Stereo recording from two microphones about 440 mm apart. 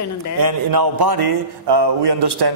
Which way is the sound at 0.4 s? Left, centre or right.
Right.